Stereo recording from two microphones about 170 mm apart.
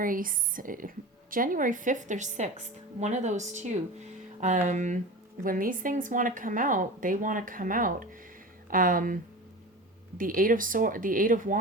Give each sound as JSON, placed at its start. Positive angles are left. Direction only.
{"t": 0.0, "sound": "speech", "side_deg": -55}